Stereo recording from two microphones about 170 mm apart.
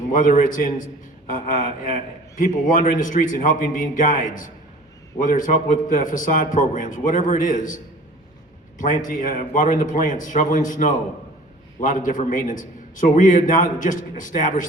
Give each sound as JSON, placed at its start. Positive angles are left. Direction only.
{"t": 0.1, "sound": "a man's voice", "side_deg": 50}
{"t": 9.0, "sound": "a man's voice", "side_deg": 50}